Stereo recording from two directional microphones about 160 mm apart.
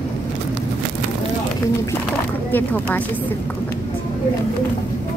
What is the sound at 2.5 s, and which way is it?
Speech, 10° left (ahead or behind).